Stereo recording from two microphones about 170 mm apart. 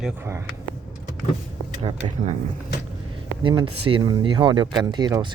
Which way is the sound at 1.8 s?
35° right (ahead or behind).